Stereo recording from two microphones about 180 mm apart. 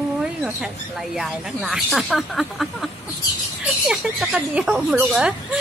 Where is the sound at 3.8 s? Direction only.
5° right (ahead or behind).